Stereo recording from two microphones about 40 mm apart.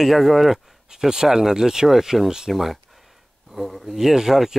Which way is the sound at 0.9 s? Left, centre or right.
Centre.